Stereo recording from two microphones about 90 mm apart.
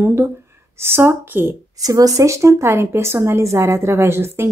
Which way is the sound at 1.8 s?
40° right (ahead or behind).